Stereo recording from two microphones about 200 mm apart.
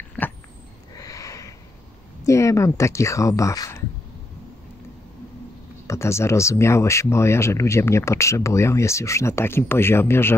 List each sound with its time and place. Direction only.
0.9 s a sound: 15° left (ahead or behind)
2.2 s speech: 15° left (ahead or behind)
5.9 s speech: 15° left (ahead or behind)